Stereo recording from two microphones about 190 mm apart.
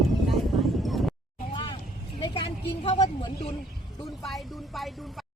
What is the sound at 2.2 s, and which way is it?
A woman's voice, 25° left (ahead or behind).